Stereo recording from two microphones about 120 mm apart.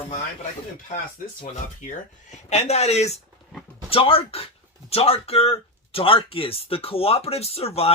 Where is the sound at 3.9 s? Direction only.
50° left (ahead or behind).